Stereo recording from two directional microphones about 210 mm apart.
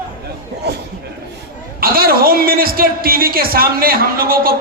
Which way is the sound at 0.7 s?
50° right (ahead or behind).